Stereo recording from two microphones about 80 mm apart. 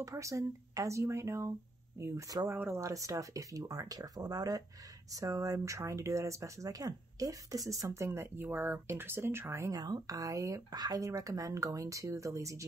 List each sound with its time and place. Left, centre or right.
0.0 s speech: right
2.5 s speech: right
2.8 s speech: right
7.8 s speech: right
9.7 s speech: right